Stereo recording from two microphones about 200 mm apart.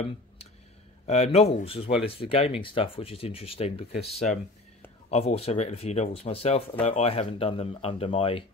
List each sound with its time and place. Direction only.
1.0 s speech: 30° left (ahead or behind)